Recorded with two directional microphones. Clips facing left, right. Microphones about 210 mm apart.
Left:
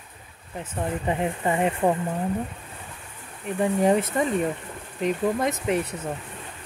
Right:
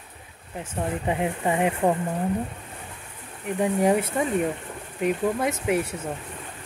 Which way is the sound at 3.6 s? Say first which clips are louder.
Left 1 dB; 10° right (ahead or behind).